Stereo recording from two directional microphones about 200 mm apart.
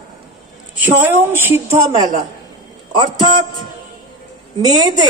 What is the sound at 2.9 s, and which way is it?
Speech, 25° right (ahead or behind).